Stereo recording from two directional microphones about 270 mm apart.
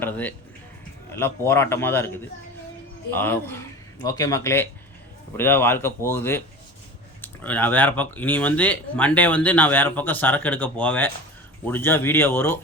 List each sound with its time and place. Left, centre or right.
0.0 s speech: centre